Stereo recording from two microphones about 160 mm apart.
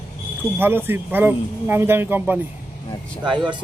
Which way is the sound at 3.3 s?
30° right (ahead or behind).